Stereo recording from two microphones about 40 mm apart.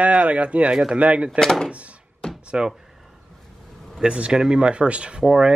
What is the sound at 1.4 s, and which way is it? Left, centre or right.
Speech, centre.